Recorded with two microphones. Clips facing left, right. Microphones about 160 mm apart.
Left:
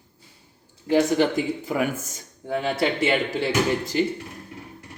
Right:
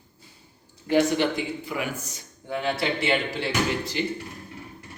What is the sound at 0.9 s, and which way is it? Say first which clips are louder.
A man's voice: left 2 dB; 40° left (ahead or behind).